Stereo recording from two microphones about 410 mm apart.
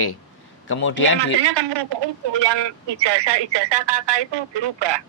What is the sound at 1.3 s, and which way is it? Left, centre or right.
Speech, right.